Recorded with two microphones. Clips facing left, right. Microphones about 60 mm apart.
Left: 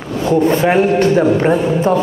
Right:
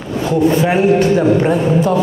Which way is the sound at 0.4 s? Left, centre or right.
Left.